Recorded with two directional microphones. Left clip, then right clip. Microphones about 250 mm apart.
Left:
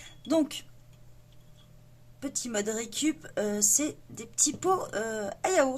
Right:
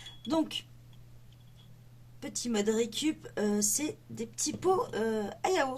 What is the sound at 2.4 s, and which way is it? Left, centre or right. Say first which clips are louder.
Speech: right 3 dB; left.